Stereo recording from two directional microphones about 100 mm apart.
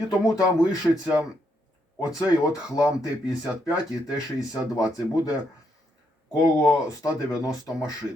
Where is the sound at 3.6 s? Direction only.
30° left (ahead or behind).